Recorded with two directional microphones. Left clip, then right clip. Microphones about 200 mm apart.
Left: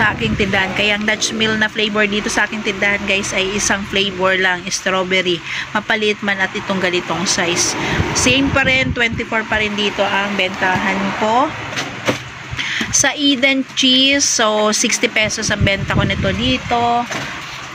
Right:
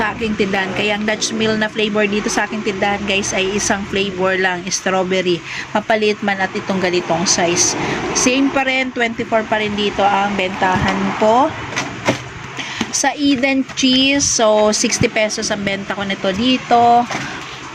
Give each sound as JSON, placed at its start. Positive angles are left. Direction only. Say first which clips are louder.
{"t": 0.0, "sound": "speech", "louder": "left 2 dB", "side_deg": -10}
{"t": 12.8, "sound": "speech", "louder": "left 1 dB", "side_deg": -10}
{"t": 16.2, "sound": "a sound", "louder": "right 1 dB", "side_deg": -30}